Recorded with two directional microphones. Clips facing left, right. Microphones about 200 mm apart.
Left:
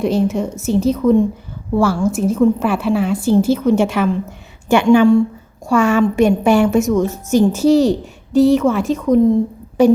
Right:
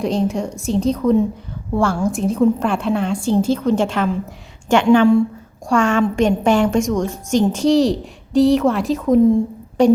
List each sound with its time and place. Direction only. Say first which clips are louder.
0.0 s a woman's voice: left 3 dB; 5° left (ahead or behind)